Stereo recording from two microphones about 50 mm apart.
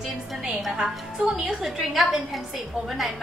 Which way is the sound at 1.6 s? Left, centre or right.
Centre.